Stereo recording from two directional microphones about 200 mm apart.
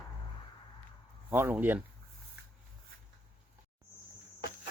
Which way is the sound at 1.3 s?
10° right (ahead or behind).